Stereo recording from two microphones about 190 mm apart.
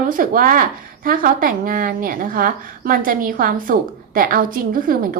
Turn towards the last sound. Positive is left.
turn(degrees=-45)  # may be behind; listen again after turning